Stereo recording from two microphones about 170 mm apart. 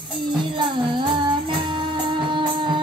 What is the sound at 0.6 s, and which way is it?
Music, 30° right (ahead or behind).